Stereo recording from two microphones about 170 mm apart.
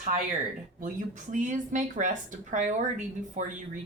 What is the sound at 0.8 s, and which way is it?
Speech, 50° right (ahead or behind).